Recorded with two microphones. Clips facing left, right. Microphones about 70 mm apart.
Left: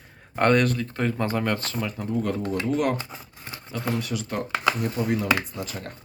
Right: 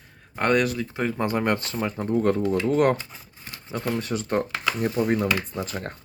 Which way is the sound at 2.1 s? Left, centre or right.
Right.